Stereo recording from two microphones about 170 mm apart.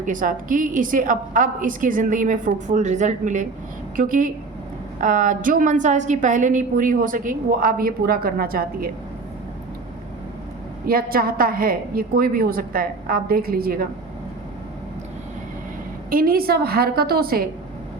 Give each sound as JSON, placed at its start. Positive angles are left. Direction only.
{"t": 0.0, "sound": "a woman's voice", "side_deg": -50}
{"t": 10.8, "sound": "a woman's voice", "side_deg": -60}
{"t": 16.0, "sound": "a woman's voice", "side_deg": -60}